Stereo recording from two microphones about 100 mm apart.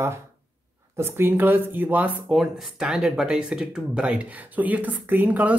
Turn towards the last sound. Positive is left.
turn(degrees=-15)  # may be behind; listen again after turning